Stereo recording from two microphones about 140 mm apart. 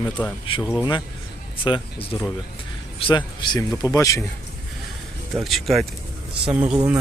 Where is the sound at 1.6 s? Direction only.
35° left (ahead or behind).